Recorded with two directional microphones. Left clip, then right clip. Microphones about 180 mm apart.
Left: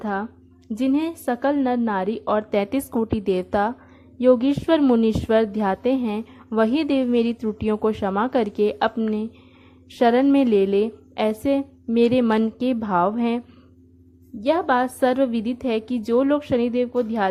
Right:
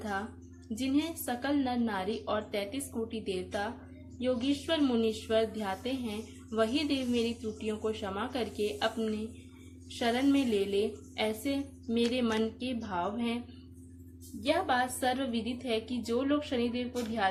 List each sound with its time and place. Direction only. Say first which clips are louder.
0.0 s a woman's voice: left 9 dB; 40° left (ahead or behind)
14.4 s a woman's voice: left 9 dB; 45° left (ahead or behind)